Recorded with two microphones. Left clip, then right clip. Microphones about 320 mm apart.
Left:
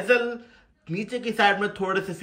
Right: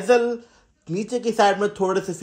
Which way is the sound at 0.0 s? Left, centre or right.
Centre.